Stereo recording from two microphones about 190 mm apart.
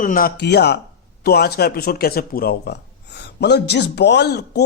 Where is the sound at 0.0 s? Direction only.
50° left (ahead or behind).